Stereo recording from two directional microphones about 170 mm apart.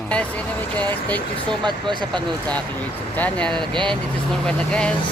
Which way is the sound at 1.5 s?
25° right (ahead or behind).